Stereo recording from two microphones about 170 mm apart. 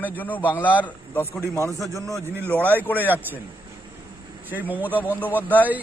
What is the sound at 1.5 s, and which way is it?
Speech, 15° left (ahead or behind).